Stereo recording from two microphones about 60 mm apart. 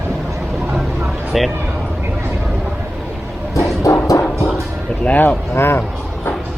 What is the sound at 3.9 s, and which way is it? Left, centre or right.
Music, left.